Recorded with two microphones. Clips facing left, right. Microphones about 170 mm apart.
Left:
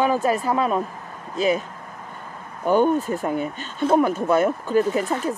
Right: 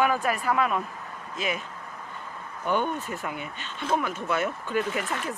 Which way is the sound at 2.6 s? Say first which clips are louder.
Left 9 dB; 40° left (ahead or behind).